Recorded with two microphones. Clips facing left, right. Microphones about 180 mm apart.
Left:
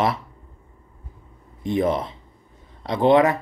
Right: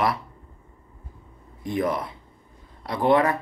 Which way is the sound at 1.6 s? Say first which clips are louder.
Left 4 dB; 25° left (ahead or behind).